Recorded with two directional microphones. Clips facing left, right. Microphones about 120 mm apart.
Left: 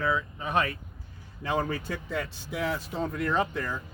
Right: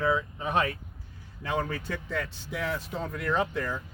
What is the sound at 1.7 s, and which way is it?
Speech, 10° left (ahead or behind).